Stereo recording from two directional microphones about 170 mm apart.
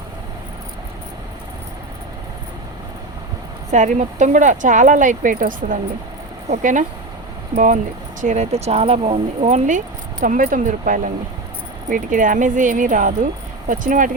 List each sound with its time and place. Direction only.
3.7 s speech: 45° right (ahead or behind)